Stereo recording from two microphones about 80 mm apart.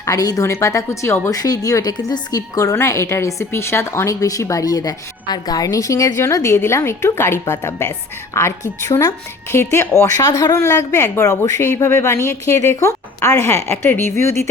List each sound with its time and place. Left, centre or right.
0.0 s a woman's voice: left
1.3 s a woman's voice: left
2.7 s a woman's voice: left